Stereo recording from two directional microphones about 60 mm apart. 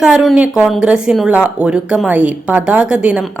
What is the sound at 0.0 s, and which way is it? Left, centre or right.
A woman's voice, centre.